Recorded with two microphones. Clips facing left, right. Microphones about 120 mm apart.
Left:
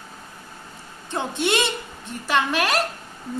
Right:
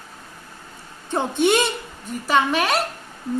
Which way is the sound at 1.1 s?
15° right (ahead or behind).